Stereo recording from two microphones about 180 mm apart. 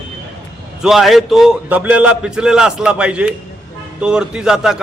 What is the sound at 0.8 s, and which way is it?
A man's voice, centre (ahead or behind).